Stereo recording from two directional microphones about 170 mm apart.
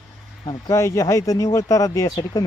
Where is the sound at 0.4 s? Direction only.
15° left (ahead or behind).